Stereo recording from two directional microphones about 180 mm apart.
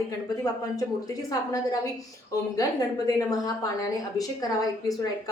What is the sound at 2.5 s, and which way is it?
A woman's voice, 20° left (ahead or behind).